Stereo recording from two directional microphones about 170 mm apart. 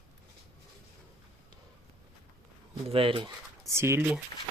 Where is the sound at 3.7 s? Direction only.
15° right (ahead or behind).